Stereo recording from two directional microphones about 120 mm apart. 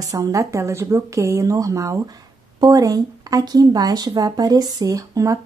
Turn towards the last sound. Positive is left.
turn(degrees=-30)  # may be behind; listen again after turning